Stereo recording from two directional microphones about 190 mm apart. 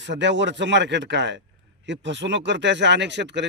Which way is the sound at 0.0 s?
70° right (ahead or behind).